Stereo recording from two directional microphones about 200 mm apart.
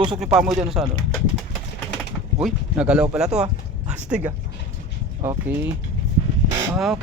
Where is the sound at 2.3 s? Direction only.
5° right (ahead or behind).